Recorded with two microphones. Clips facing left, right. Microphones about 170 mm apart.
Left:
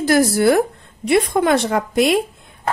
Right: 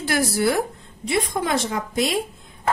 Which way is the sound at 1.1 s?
60° left (ahead or behind).